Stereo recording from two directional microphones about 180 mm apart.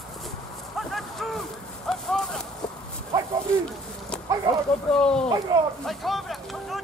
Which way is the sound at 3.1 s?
20° right (ahead or behind).